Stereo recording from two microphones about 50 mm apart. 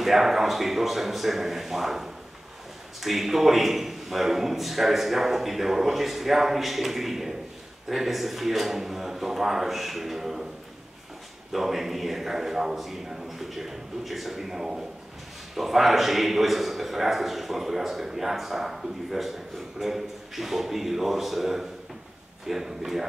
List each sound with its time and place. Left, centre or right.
0.0 s a man's voice: centre
11.5 s a man's voice: centre